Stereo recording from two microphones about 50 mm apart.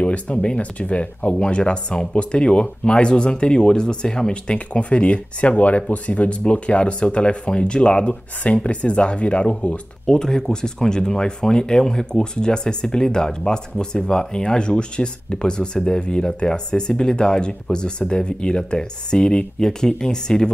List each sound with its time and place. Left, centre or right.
0.0 s speech: left
10.0 s speech: centre